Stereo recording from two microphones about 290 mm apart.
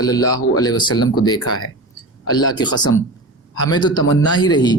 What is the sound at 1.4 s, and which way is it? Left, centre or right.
Speech, left.